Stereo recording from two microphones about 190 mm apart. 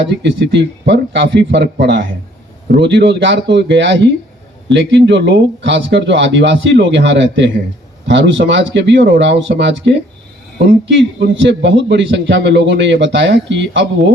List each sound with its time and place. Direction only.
0.0 s a man's voice: 65° right (ahead or behind)
1.5 s a man's voice: 60° right (ahead or behind)